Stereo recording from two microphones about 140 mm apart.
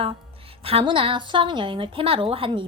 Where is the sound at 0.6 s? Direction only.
40° right (ahead or behind).